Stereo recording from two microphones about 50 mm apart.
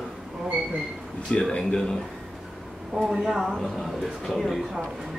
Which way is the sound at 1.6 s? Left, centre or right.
Centre.